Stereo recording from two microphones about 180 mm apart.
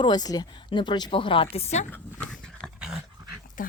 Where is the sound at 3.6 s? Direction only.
50° left (ahead or behind).